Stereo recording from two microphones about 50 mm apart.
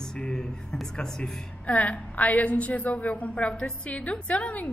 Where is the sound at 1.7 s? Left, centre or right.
Left.